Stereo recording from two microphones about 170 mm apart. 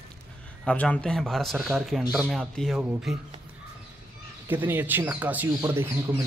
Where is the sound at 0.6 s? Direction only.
10° left (ahead or behind).